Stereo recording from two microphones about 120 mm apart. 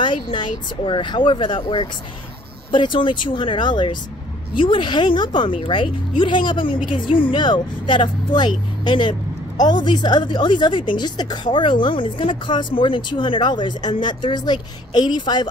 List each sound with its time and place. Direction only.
0.0 s a woman's voice: 40° left (ahead or behind)